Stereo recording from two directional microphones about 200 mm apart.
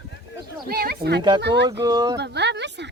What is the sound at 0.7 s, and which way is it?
Speech, 50° right (ahead or behind).